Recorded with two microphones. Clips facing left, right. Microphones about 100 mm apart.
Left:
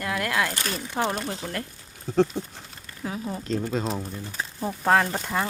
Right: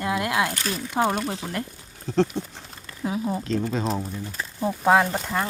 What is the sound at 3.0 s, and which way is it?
Speech, 15° right (ahead or behind).